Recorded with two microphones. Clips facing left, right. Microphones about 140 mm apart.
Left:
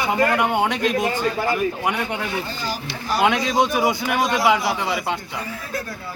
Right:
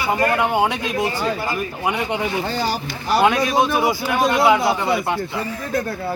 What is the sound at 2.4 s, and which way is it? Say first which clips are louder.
Speech: right 6 dB; 75° right (ahead or behind).